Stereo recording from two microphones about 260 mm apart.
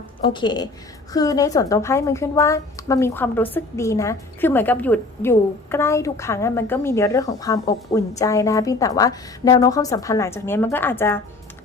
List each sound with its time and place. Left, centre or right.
0.2 s a woman's voice: centre